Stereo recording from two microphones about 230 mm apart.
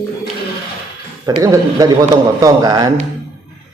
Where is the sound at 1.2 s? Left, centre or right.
Centre.